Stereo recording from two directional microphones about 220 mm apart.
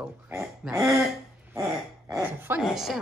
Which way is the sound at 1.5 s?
15° right (ahead or behind).